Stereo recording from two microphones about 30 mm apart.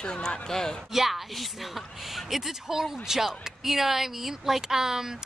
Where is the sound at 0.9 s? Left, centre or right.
Centre.